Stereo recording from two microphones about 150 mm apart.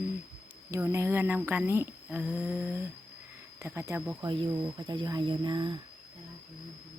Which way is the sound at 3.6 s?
15° right (ahead or behind).